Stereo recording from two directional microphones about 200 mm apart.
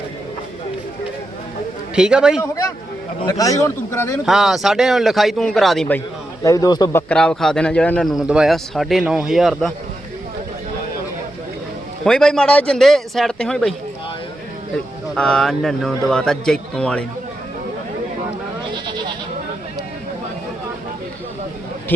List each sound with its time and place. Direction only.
2.0 s speech: 5° right (ahead or behind)
3.2 s a man's voice: 15° left (ahead or behind)
4.3 s speech: centre (ahead or behind)
6.4 s a man's voice: 15° left (ahead or behind)
7.1 s speech: 5° left (ahead or behind)
12.0 s speech: 5° left (ahead or behind)
15.1 s speech: 5° left (ahead or behind)